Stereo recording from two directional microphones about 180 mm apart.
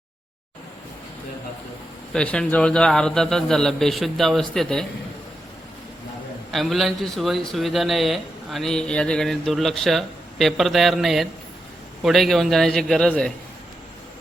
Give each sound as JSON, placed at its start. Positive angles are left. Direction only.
{"t": 2.1, "sound": "speech", "side_deg": 5}
{"t": 6.5, "sound": "speech", "side_deg": 0}